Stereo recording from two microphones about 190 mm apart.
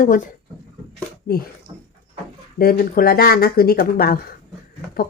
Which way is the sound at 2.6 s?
50° left (ahead or behind).